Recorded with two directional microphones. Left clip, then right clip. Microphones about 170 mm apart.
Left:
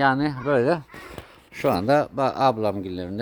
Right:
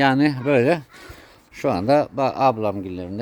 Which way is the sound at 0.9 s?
Centre (ahead or behind).